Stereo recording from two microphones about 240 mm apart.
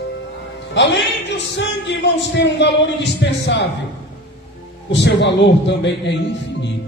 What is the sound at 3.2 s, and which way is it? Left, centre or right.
Speech, left.